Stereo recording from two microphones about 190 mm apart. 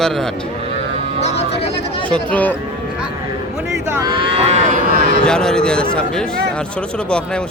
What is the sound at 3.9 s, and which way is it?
Cattle, 20° right (ahead or behind).